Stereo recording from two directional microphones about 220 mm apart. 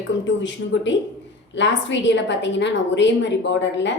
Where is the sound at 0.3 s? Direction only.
55° left (ahead or behind).